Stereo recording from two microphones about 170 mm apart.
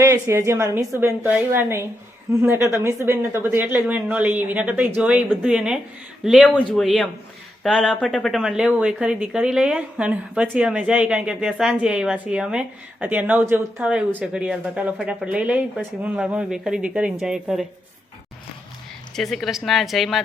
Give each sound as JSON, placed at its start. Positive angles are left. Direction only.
{"t": 0.0, "sound": "speech", "side_deg": -15}
{"t": 19.1, "sound": "speech", "side_deg": 0}